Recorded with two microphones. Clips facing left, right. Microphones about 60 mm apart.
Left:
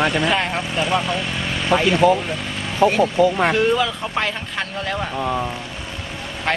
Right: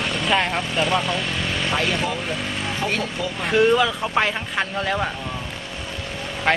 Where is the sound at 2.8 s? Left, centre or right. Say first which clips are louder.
Left 13 dB; left.